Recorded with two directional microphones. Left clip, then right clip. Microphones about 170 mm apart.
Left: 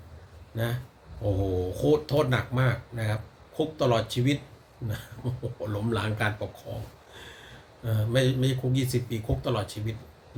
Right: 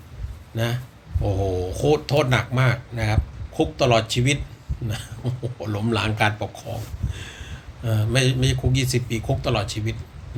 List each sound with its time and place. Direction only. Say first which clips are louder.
0.5 s a man's voice: right 5 dB; 15° left (ahead or behind)
7.1 s a sound: right 6 dB; 15° left (ahead or behind)
7.9 s a man's voice: right 4 dB; 15° left (ahead or behind)